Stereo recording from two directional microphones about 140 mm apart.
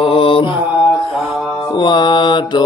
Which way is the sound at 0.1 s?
40° left (ahead or behind).